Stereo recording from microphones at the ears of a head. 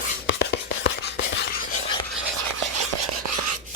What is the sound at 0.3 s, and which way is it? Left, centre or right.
Whispering, left.